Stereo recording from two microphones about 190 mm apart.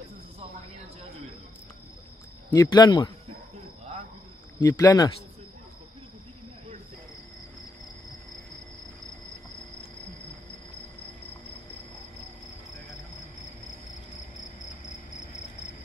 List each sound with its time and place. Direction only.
2.5 s speech: 20° left (ahead or behind)
4.6 s speech: 20° left (ahead or behind)